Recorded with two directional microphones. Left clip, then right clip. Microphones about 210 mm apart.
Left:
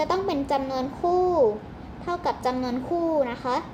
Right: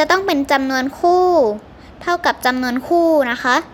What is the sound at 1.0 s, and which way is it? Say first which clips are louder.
A woman's voice: right 8 dB; 80° right.